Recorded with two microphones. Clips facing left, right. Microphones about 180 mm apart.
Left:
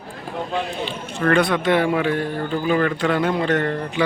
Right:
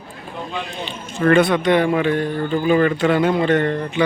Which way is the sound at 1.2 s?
5° right (ahead or behind).